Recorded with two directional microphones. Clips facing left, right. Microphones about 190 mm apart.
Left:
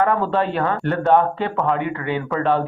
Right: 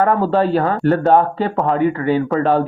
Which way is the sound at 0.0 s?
35° right (ahead or behind).